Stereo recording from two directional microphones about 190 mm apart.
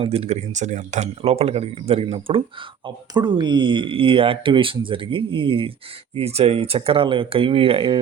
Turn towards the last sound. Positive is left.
turn(degrees=-25)  # may be behind; listen again after turning